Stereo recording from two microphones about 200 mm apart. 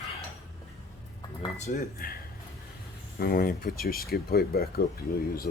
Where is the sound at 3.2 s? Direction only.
45° left (ahead or behind).